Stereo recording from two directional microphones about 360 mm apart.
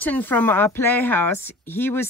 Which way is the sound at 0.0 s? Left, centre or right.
Centre.